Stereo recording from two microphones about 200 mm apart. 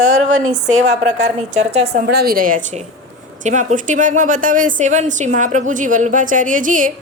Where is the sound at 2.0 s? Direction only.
50° right (ahead or behind).